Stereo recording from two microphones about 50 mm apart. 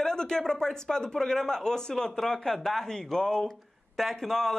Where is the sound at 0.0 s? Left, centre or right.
Centre.